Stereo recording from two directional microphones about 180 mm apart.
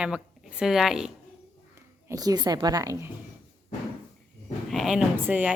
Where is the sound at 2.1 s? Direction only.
20° right (ahead or behind).